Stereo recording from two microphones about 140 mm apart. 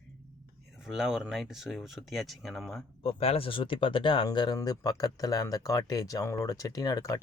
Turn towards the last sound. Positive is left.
turn(degrees=25)  # may be behind; listen again after turning